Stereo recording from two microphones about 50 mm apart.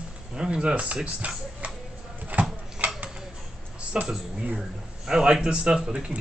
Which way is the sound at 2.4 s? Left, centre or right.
Right.